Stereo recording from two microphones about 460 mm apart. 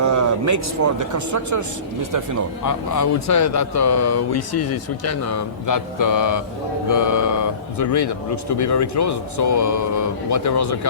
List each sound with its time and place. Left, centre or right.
0.0 s speech: right
2.6 s speech: left